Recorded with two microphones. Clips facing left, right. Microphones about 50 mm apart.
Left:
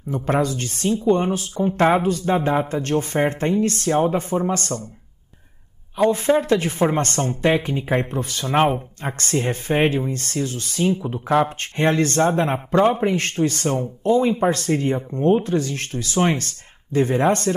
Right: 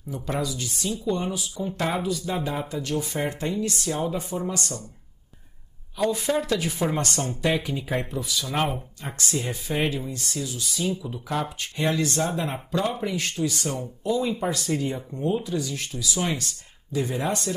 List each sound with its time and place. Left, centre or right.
0.1 s a man's voice: left
5.9 s speech: left
9.2 s a man's voice: left